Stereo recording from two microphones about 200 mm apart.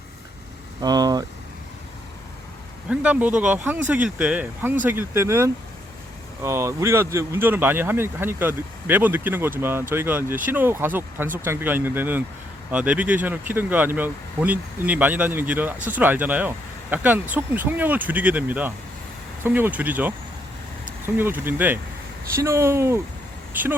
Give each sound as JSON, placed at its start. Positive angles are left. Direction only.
{"t": 0.8, "sound": "speech", "side_deg": -20}
{"t": 2.9, "sound": "speech", "side_deg": -5}
{"t": 21.2, "sound": "speech", "side_deg": -10}